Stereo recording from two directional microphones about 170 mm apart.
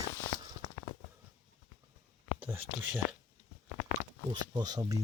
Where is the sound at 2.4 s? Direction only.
10° right (ahead or behind).